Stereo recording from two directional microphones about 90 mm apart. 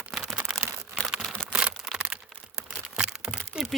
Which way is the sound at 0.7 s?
30° right (ahead or behind).